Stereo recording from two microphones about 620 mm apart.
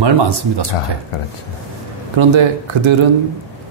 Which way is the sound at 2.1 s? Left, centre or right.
Right.